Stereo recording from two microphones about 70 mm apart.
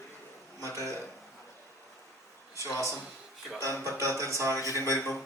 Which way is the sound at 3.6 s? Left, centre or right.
Right.